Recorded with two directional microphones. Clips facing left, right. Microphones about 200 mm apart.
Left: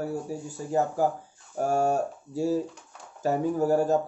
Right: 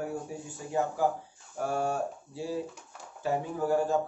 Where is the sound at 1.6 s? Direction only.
45° left (ahead or behind).